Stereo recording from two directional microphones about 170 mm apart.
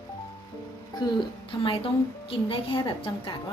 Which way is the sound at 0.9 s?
25° left (ahead or behind).